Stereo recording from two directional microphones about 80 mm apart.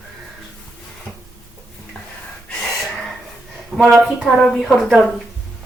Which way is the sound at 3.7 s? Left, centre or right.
Centre.